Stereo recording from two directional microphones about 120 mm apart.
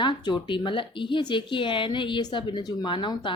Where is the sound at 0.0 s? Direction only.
40° left (ahead or behind).